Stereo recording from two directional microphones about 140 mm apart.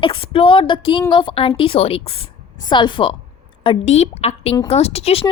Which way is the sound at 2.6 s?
35° left (ahead or behind).